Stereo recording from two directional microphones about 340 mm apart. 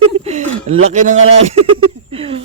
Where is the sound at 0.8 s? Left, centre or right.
Right.